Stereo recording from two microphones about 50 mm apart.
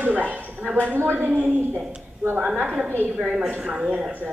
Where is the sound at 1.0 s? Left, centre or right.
Right.